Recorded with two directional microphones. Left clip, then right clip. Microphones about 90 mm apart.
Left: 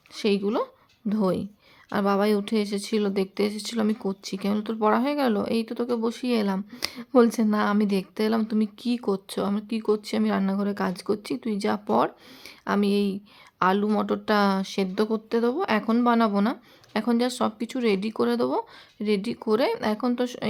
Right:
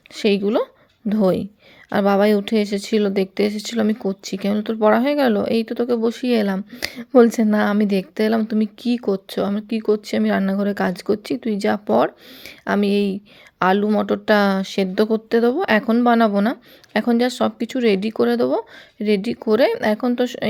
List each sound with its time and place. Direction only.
0.1 s speech: 40° right (ahead or behind)
13.8 s speech: 25° right (ahead or behind)